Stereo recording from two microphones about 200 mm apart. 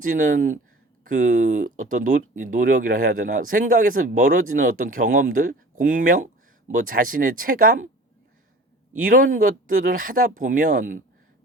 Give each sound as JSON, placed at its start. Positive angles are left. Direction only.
{"t": 0.0, "sound": "speech", "side_deg": -45}
{"t": 9.0, "sound": "speech", "side_deg": -45}